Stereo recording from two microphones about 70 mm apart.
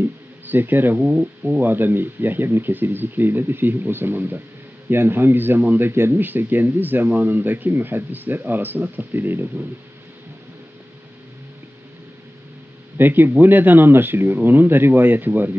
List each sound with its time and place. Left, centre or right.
0.0 s a sound: right
0.9 s speech: centre
1.6 s speech: right
12.9 s speech: right